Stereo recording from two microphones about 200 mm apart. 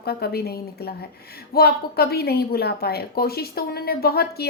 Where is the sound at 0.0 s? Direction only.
50° left (ahead or behind).